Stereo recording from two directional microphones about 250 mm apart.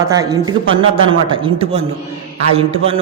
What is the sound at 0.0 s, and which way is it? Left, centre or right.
Speech, centre.